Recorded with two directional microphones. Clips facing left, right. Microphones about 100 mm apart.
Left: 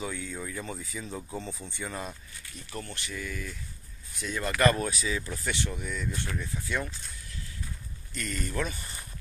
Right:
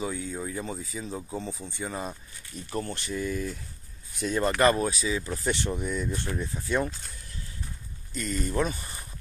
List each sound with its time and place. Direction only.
0.0 s speech: 25° right (ahead or behind)
2.7 s speech: 35° right (ahead or behind)
5.4 s speech: 35° right (ahead or behind)
8.1 s speech: 20° right (ahead or behind)